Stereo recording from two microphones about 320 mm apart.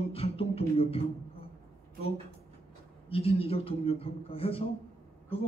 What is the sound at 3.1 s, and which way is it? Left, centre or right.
A man's voice, centre.